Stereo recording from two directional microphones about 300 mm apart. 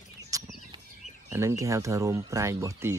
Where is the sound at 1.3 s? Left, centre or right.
Centre.